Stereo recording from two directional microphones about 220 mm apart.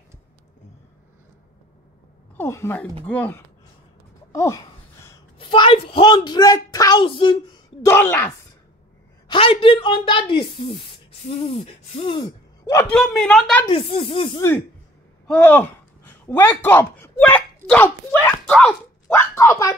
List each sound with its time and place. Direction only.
2.3 s a woman's voice: 10° left (ahead or behind)
9.3 s speech: 25° left (ahead or behind)
12.9 s speech: centre (ahead or behind)
13.7 s speech: 25° left (ahead or behind)
15.2 s speech: 5° left (ahead or behind)